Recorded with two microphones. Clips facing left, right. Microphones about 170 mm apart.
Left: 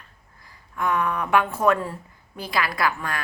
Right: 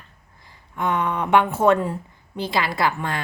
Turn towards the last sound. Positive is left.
turn(degrees=-25)  # may be behind; listen again after turning